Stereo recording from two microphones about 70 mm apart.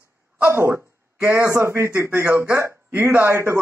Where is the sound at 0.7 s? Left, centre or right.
Right.